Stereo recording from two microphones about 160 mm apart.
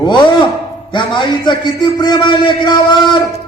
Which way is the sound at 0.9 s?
30° left (ahead or behind).